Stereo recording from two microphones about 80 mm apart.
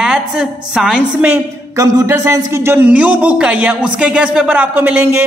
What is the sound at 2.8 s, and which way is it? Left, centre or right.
Speech, centre.